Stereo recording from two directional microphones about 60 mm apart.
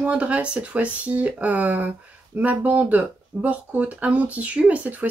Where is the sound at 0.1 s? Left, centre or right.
Right.